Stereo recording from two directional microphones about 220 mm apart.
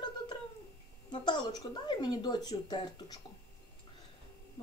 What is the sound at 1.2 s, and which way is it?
A woman's voice, 20° left (ahead or behind).